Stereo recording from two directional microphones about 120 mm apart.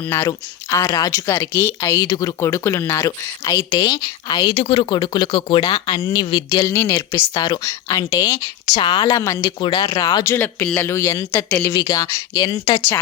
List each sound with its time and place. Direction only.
0.1 s speech: 20° left (ahead or behind)
2.0 s speech: 30° left (ahead or behind)
4.4 s speech: 45° left (ahead or behind)
6.0 s speech: 25° left (ahead or behind)
6.3 s speech: 35° left (ahead or behind)
6.7 s speech: 25° left (ahead or behind)
7.3 s speech: 35° left (ahead or behind)
7.6 s speech: 25° left (ahead or behind)
8.8 s a woman's voice: 45° left (ahead or behind)
9.0 s speech: 30° left (ahead or behind)
9.4 s speech: 40° left (ahead or behind)
10.2 s speech: 15° left (ahead or behind)